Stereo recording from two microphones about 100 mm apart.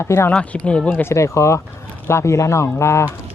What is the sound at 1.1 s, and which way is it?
A man's voice, 30° left (ahead or behind).